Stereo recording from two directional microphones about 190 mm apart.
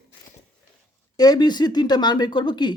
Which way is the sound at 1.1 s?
20° left (ahead or behind).